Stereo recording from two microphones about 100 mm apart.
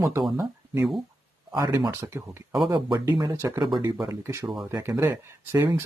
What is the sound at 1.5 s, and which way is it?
Speech, 40° right (ahead or behind).